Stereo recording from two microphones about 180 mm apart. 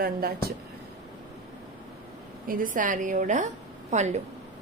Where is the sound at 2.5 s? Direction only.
45° right (ahead or behind).